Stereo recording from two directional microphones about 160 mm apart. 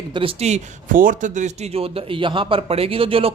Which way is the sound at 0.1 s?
35° right (ahead or behind).